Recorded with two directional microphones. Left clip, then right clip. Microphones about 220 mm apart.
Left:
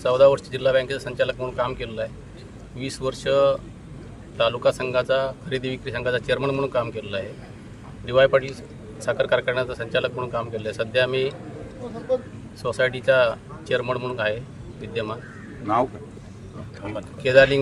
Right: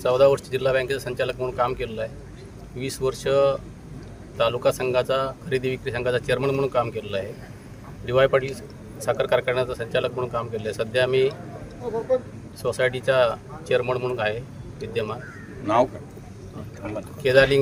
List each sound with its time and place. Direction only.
0.0 s speech: centre (ahead or behind)
12.6 s speech: centre (ahead or behind)
16.8 s speech: 35° left (ahead or behind)
17.2 s speech: centre (ahead or behind)